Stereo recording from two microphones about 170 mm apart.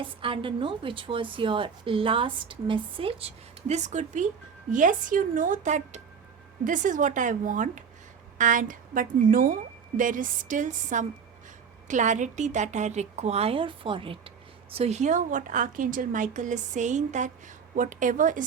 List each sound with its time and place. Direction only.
0.0 s a woman's voice: 30° right (ahead or behind); by 18.4 s 50° right (ahead or behind)